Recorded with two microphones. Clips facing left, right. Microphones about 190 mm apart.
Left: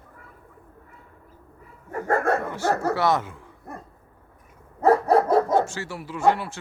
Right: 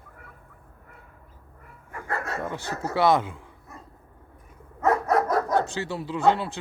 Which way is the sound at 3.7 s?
55° left (ahead or behind).